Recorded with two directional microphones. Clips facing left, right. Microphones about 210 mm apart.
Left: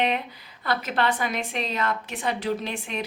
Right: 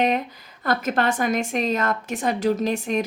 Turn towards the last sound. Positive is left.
turn(degrees=-40)  # may be behind; listen again after turning